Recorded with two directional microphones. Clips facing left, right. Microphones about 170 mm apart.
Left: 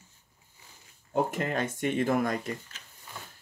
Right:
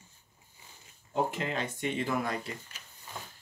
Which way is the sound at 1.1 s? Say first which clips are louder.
Left 3 dB; 50° left (ahead or behind).